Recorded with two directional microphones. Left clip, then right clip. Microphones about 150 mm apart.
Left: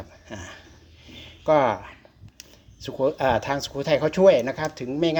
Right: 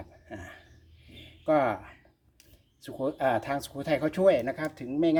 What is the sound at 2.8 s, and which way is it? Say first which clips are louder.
Speech: left 7 dB; 20° left (ahead or behind).